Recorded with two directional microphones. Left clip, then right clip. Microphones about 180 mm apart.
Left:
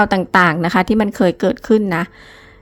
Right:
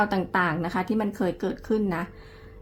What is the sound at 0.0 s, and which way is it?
A woman's voice, 45° left (ahead or behind).